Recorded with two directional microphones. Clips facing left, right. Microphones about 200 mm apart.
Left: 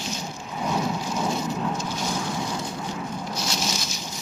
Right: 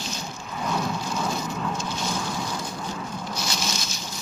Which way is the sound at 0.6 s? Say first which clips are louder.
Left 2 dB; 15° left (ahead or behind).